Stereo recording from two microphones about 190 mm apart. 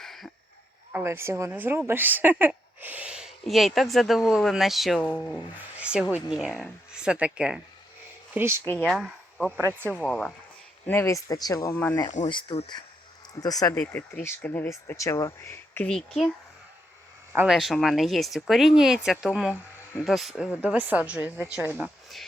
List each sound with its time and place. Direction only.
0.0 s a sound: centre (ahead or behind)
0.9 s speech: 15° right (ahead or behind); by 5.4 s 10° left (ahead or behind)
5.8 s speech: 5° right (ahead or behind)
10.0 s speech: 5° left (ahead or behind)
12.3 s speech: 25° left (ahead or behind)
17.3 s a woman's voice: 5° right (ahead or behind)